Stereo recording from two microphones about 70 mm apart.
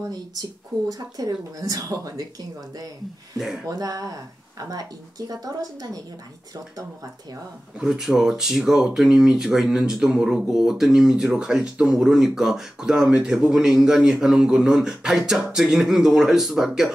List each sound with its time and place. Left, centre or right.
0.1 s speech: right
3.3 s speech: centre
3.6 s speech: right
5.3 s speech: right
7.8 s speech: centre